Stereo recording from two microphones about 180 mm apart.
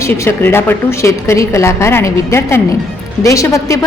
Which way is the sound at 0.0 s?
10° left (ahead or behind).